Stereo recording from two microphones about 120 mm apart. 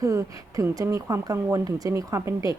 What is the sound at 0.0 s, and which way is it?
Speech, 25° right (ahead or behind).